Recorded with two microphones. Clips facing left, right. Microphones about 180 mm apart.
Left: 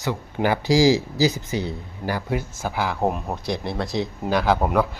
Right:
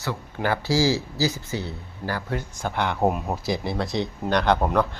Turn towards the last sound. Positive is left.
turn(degrees=5)  # may be behind; listen again after turning